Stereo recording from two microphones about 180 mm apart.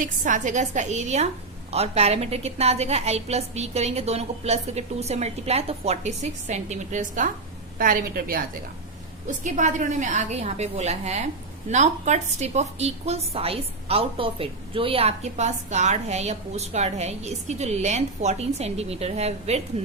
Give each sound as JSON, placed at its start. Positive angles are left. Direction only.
{"t": 0.0, "sound": "a woman's voice", "side_deg": -45}
{"t": 9.2, "sound": "a woman's voice", "side_deg": -45}